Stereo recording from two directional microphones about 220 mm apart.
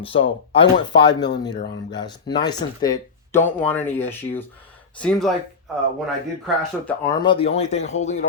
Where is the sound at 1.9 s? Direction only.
20° left (ahead or behind).